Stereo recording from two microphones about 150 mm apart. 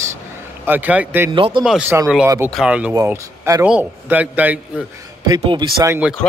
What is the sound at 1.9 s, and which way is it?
Speech, 15° right (ahead or behind).